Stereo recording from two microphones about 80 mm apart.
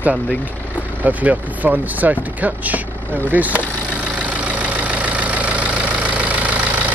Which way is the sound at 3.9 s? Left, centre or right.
Centre.